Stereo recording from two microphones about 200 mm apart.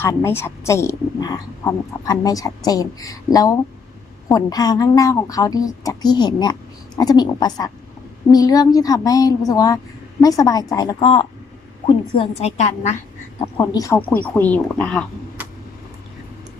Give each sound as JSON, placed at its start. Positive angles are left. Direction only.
{"t": 0.0, "sound": "a woman's voice", "side_deg": 15}
{"t": 13.4, "sound": "speech", "side_deg": 20}